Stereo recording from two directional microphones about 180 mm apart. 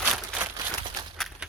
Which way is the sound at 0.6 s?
25° right (ahead or behind).